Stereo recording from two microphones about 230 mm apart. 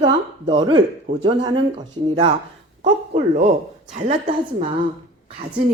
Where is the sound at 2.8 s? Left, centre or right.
Right.